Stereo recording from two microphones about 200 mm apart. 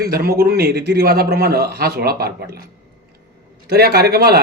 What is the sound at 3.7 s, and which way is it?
Speech, 50° right (ahead or behind).